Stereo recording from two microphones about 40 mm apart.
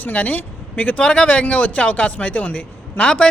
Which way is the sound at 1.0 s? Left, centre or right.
Left.